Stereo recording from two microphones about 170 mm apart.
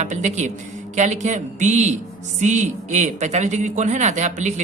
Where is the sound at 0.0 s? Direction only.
45° right (ahead or behind).